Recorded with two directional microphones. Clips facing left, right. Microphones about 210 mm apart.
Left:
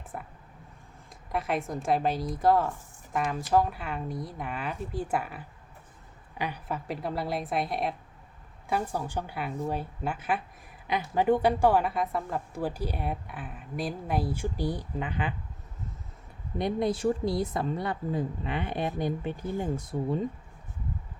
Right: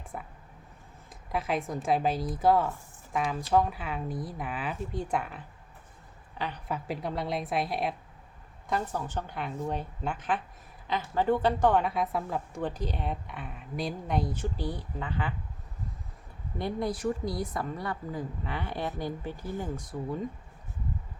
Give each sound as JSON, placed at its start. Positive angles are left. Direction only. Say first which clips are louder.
{"t": 0.1, "sound": "a woman's voice", "louder": "left 1 dB", "side_deg": 0}
{"t": 6.7, "sound": "a woman's voice", "louder": "even", "side_deg": 0}
{"t": 8.7, "sound": "a woman's voice", "louder": "left 1 dB", "side_deg": 10}
{"t": 16.6, "sound": "a woman's voice", "louder": "left 4 dB", "side_deg": 20}